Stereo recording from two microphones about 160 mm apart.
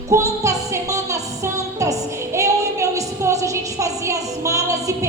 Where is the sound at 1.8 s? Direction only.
20° right (ahead or behind).